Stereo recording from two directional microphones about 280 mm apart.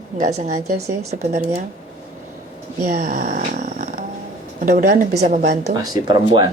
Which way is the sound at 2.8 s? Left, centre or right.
Right.